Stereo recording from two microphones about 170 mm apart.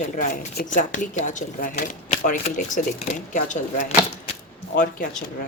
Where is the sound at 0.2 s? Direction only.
55° left (ahead or behind).